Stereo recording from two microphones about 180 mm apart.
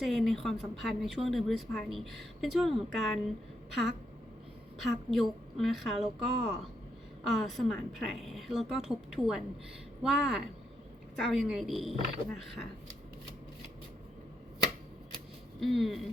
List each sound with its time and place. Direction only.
0.0 s a woman's voice: centre (ahead or behind)
4.8 s a woman's voice: centre (ahead or behind)
15.6 s a woman's voice: centre (ahead or behind)